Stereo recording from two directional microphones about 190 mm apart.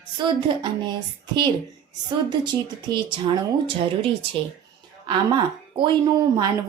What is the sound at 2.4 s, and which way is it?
Speech, 25° right (ahead or behind).